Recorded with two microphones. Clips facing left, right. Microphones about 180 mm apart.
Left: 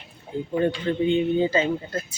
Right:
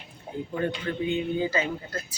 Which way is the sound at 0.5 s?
25° left (ahead or behind).